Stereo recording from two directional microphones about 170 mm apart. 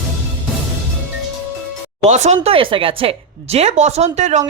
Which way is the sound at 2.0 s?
40° right (ahead or behind).